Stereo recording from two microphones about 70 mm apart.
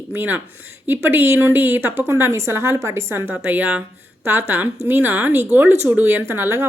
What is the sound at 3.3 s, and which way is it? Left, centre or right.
A woman's voice, right.